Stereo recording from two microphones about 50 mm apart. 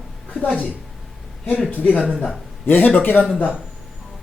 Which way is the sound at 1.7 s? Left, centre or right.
Left.